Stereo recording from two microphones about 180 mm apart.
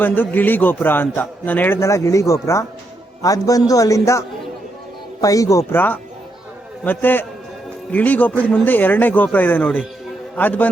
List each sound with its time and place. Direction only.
0.0 s a man's voice: 10° left (ahead or behind)